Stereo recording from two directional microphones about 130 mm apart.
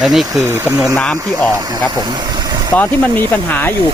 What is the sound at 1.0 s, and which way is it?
Speech, 5° left (ahead or behind).